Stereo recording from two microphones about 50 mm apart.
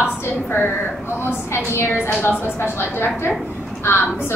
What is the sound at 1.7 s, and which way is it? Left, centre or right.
A woman's voice, left.